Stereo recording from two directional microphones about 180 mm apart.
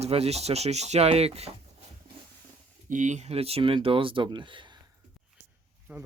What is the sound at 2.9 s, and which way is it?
Speech, 45° right (ahead or behind).